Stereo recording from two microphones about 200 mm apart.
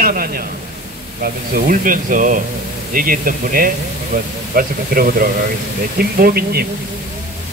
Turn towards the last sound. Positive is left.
turn(degrees=-50)  # may be behind; listen again after turning